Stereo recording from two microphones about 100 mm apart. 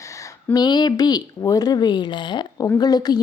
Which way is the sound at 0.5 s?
45° left (ahead or behind).